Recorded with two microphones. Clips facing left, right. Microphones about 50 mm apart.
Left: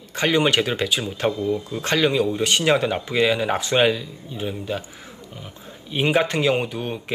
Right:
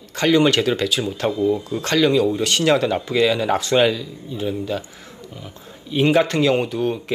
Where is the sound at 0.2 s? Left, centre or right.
Left.